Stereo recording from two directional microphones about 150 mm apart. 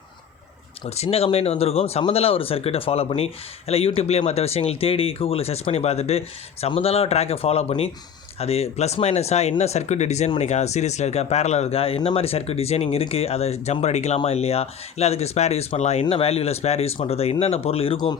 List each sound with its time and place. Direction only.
0.9 s speech: 45° left (ahead or behind)